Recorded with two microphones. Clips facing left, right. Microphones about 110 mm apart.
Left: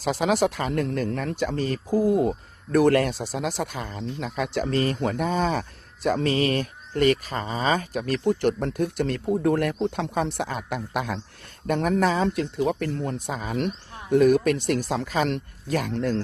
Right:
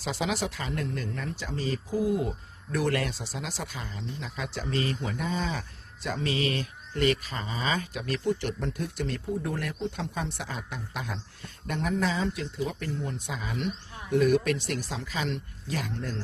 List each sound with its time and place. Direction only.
0.0 s speech: 55° left (ahead or behind)
11.6 s speech: 55° left (ahead or behind)
16.0 s speech: 80° left